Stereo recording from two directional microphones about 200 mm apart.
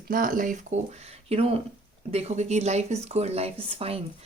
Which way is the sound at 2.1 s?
30° right (ahead or behind).